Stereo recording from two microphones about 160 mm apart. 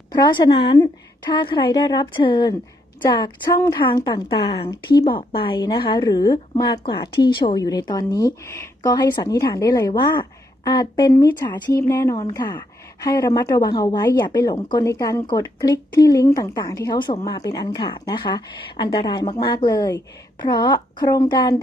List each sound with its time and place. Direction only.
0.1 s a woman's voice: 25° left (ahead or behind)